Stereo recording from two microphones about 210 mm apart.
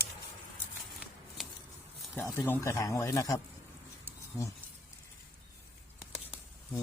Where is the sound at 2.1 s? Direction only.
10° left (ahead or behind).